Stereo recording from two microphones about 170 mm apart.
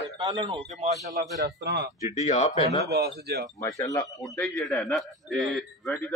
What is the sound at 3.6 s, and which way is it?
Speech, 20° left (ahead or behind).